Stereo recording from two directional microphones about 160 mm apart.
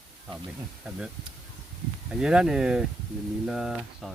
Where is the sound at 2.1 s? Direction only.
5° right (ahead or behind).